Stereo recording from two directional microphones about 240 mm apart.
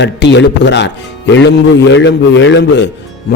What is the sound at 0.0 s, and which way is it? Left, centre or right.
A man's voice, left.